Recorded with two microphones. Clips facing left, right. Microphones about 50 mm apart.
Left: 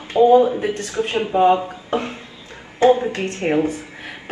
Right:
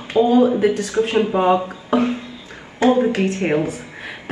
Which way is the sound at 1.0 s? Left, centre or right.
Left.